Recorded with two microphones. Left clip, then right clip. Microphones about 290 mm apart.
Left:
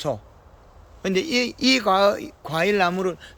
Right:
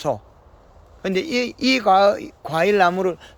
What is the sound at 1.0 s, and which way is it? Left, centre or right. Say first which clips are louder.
Speech: even; centre.